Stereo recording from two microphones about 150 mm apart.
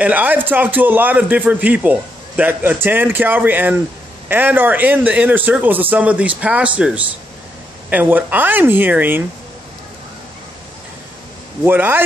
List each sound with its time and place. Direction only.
0.0 s a man's voice: 10° right (ahead or behind)
11.6 s a man's voice: 15° right (ahead or behind)